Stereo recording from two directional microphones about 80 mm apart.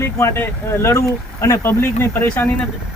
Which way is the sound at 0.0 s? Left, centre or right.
Left.